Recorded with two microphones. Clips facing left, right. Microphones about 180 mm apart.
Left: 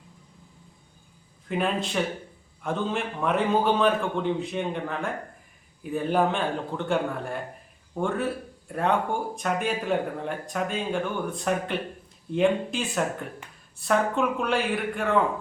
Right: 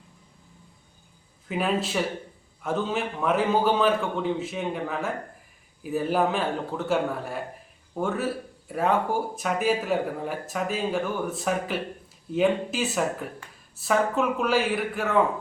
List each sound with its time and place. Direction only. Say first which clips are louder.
1.5 s speech: right 1 dB; 5° right (ahead or behind)